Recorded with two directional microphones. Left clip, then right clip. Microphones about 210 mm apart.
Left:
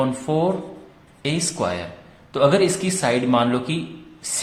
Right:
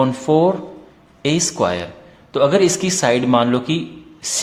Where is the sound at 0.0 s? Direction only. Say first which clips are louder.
Right 6 dB; 20° right (ahead or behind).